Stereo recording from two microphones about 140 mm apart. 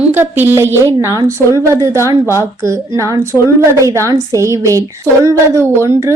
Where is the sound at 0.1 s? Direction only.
15° right (ahead or behind).